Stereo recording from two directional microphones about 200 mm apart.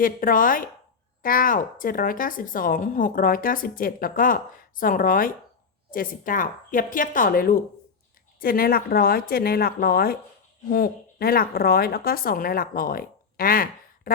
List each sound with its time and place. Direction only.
0.0 s a woman's voice: 45° left (ahead or behind)